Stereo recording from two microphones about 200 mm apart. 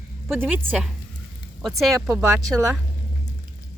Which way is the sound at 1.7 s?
10° right (ahead or behind).